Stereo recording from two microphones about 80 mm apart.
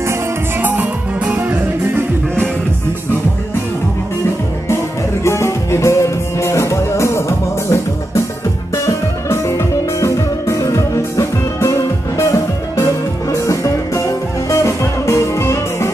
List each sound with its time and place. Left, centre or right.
0.6 s music: right
5.2 s music: left